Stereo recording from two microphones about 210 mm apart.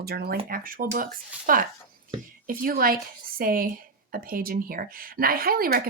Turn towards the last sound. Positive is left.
turn(degrees=-45)  # may be behind; listen again after turning